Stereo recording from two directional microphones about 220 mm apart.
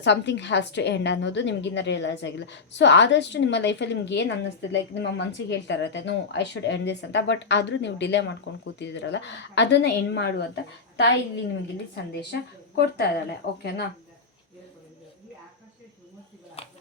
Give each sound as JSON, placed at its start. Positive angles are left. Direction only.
{"t": 0.0, "sound": "a woman's voice", "side_deg": 50}
{"t": 12.3, "sound": "a woman's voice", "side_deg": 50}
{"t": 16.6, "sound": "a sound", "side_deg": 25}